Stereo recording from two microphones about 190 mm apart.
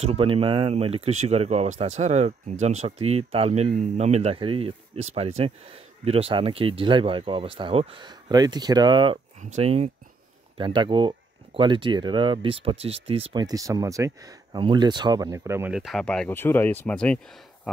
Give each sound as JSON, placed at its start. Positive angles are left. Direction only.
{"t": 0.0, "sound": "speech", "side_deg": -30}